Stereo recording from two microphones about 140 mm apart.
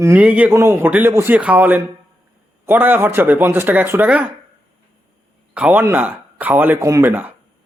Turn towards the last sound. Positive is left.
turn(degrees=-15)  # may be behind; listen again after turning